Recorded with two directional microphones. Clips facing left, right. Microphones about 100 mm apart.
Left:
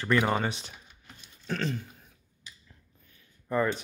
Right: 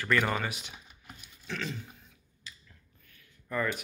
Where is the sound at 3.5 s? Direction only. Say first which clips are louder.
Left 5 dB; 25° left (ahead or behind).